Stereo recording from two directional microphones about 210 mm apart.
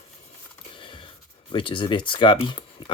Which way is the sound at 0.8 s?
25° left (ahead or behind).